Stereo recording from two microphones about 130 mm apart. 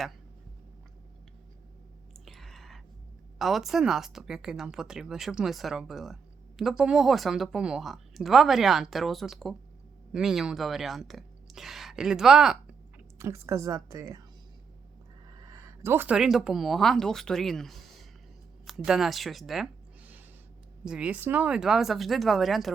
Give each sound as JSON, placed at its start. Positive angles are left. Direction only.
{"t": 2.2, "sound": "a sound", "side_deg": 0}
{"t": 3.3, "sound": "a woman's voice", "side_deg": 0}
{"t": 13.1, "sound": "a woman's voice", "side_deg": -20}
{"t": 15.4, "sound": "a sound", "side_deg": -20}
{"t": 16.1, "sound": "a woman's voice", "side_deg": -5}
{"t": 20.8, "sound": "a woman's voice", "side_deg": -10}